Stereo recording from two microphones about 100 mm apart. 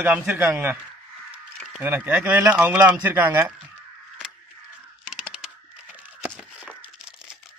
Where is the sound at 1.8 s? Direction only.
20° right (ahead or behind).